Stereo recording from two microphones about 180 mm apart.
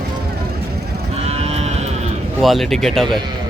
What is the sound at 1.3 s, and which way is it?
Livestock, 35° right (ahead or behind).